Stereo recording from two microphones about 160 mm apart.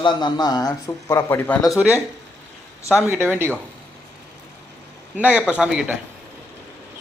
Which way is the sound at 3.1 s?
15° right (ahead or behind).